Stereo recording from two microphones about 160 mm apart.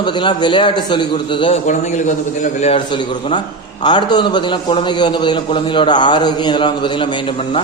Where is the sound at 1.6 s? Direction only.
50° left (ahead or behind).